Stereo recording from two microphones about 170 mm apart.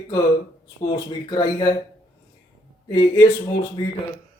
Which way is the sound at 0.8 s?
25° left (ahead or behind).